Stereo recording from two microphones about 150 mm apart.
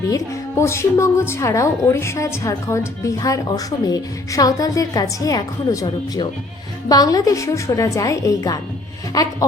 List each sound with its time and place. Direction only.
0.1 s a woman's voice: 20° left (ahead or behind)